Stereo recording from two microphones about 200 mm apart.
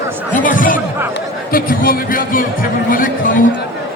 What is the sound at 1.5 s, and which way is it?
Speech, 45° left (ahead or behind).